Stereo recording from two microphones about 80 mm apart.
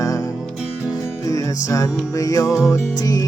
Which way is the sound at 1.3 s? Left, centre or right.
Left.